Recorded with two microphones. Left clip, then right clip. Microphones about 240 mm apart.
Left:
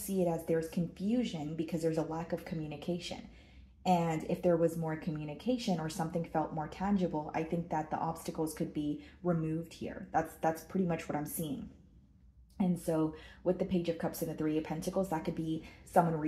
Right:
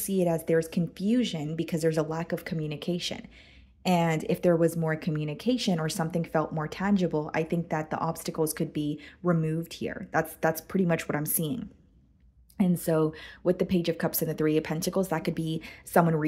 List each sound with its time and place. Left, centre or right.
0.1 s speech: right
12.5 s speech: right